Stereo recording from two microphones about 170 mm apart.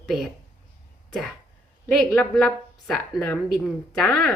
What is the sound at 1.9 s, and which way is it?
A woman's voice, centre (ahead or behind).